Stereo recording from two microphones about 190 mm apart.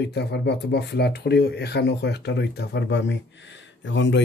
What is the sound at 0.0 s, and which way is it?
Speech, 60° left (ahead or behind).